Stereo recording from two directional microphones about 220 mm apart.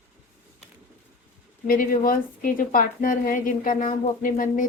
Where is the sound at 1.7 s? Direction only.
40° left (ahead or behind).